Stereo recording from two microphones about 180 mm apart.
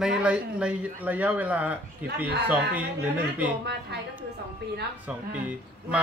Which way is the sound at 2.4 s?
10° right (ahead or behind).